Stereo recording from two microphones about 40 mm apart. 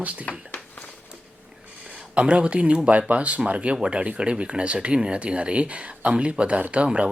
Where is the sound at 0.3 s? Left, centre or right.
Left.